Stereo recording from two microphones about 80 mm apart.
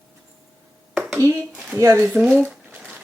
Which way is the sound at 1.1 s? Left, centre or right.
Right.